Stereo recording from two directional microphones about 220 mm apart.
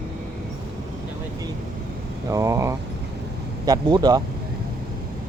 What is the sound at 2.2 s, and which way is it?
Speech, 15° right (ahead or behind).